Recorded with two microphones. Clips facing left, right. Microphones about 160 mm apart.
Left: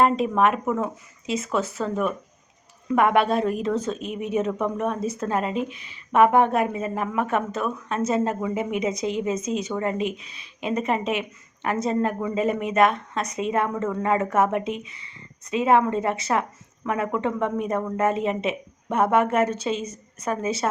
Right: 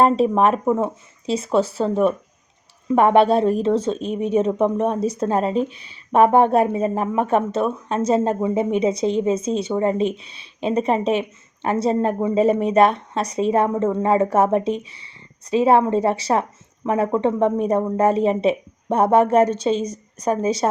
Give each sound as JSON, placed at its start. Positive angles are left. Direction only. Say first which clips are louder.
{"t": 0.0, "sound": "speech", "louder": "right 4 dB", "side_deg": -30}
{"t": 19.8, "sound": "a woman's voice", "louder": "right 7 dB", "side_deg": 25}
{"t": 20.2, "sound": "speech", "louder": "right 6 dB", "side_deg": -30}